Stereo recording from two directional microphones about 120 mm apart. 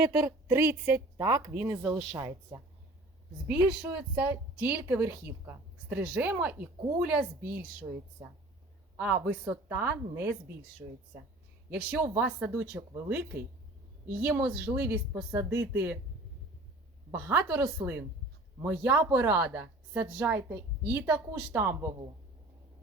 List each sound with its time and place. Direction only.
0.2 s a woman's voice: 20° right (ahead or behind)
3.4 s a woman's voice: 10° right (ahead or behind)
11.9 s a woman's voice: 10° right (ahead or behind)
14.8 s a woman's voice: 25° right (ahead or behind)
17.1 s a woman's voice: 15° right (ahead or behind)
19.9 s a woman's voice: 10° right (ahead or behind)